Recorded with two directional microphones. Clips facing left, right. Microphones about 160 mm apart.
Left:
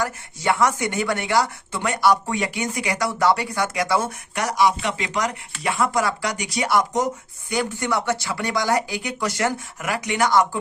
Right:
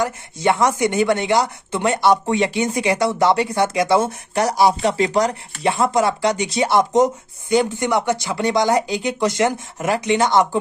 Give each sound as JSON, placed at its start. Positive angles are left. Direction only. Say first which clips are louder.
{"t": 0.0, "sound": "speech", "louder": "right 5 dB", "side_deg": -20}